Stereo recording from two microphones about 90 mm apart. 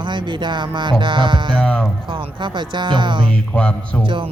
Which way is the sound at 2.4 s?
60° right (ahead or behind).